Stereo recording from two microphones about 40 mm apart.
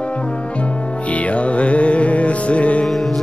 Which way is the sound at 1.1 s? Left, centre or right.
Left.